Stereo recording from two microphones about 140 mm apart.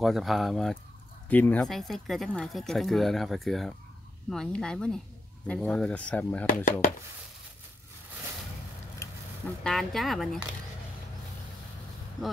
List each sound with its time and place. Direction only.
0.0 s speech: centre (ahead or behind)
1.3 s speech: 10° left (ahead or behind)
1.7 s speech: centre (ahead or behind)
6.4 s speech: 75° left (ahead or behind)
9.0 s duck: 20° left (ahead or behind)
9.6 s speech: centre (ahead or behind)